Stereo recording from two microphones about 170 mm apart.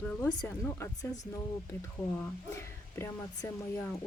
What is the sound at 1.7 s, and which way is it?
Speech, 15° left (ahead or behind).